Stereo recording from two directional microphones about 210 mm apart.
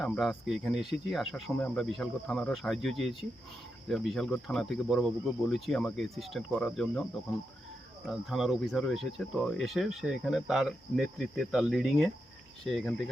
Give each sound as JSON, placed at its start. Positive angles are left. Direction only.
{"t": 0.0, "sound": "speech", "side_deg": 0}
{"t": 8.0, "sound": "speech", "side_deg": 0}